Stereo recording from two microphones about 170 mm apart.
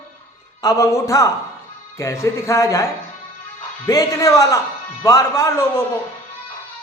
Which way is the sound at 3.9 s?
20° left (ahead or behind).